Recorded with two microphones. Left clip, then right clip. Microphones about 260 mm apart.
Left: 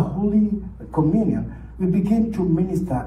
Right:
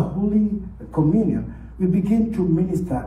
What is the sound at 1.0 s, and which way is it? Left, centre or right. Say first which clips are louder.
Speech: right 1 dB; centre.